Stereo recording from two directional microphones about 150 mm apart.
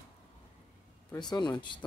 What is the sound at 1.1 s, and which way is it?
Speech, 30° left (ahead or behind).